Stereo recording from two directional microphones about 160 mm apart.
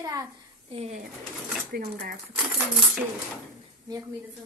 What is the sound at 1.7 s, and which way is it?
Speech, 70° right (ahead or behind).